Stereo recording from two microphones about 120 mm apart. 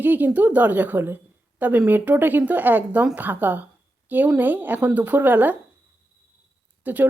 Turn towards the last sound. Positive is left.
turn(degrees=-15)  # may be behind; listen again after turning